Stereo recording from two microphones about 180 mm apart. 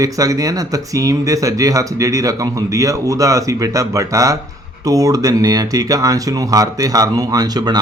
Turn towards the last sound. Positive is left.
turn(degrees=-20)  # may be behind; listen again after turning